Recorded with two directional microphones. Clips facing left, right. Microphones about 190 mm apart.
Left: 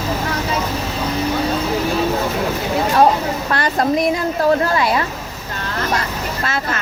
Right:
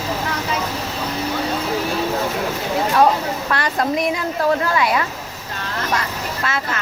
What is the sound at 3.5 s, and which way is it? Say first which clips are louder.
A woman's voice: left 3 dB; 40° left (ahead or behind).